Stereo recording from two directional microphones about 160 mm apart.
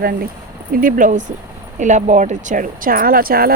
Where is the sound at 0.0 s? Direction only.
65° right (ahead or behind).